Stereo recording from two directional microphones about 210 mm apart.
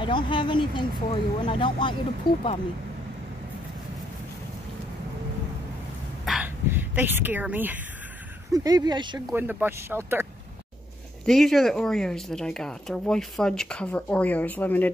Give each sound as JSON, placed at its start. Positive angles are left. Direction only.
{"t": 0.0, "sound": "speech", "side_deg": 20}
{"t": 6.2, "sound": "a sound", "side_deg": -5}
{"t": 8.6, "sound": "speech", "side_deg": -20}
{"t": 9.3, "sound": "speech", "side_deg": -10}
{"t": 11.2, "sound": "speech", "side_deg": 0}